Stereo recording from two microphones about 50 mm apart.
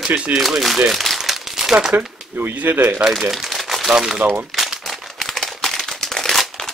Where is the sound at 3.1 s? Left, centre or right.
Centre.